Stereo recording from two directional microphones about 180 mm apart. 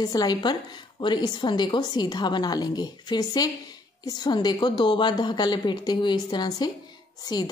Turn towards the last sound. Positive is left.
turn(degrees=20)  # may be behind; listen again after turning